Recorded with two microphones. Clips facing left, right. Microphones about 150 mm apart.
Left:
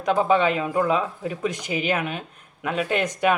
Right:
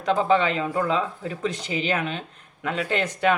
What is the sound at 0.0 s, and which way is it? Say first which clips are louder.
Speech: left 1 dB; 15° left (ahead or behind).